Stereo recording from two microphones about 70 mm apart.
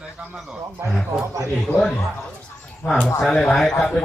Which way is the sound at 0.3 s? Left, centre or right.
Centre.